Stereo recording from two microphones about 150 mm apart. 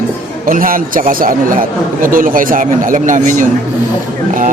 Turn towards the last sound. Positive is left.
turn(degrees=-60)  # may be behind; listen again after turning